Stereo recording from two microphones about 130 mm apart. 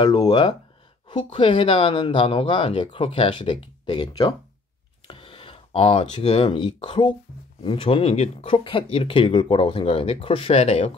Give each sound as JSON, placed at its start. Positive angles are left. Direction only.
{"t": 0.0, "sound": "speech", "side_deg": 35}